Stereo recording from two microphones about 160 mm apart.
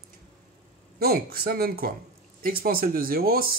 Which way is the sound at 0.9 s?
70° right (ahead or behind).